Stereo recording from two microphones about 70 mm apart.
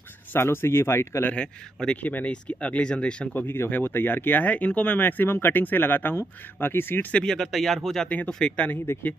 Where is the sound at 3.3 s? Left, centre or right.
Left.